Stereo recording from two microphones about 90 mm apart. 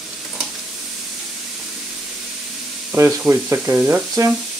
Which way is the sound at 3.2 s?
25° right (ahead or behind).